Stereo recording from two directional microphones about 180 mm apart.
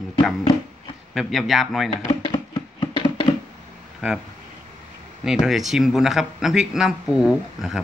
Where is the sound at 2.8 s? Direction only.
25° left (ahead or behind).